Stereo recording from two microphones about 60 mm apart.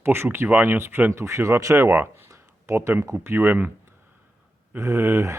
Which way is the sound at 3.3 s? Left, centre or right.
Right.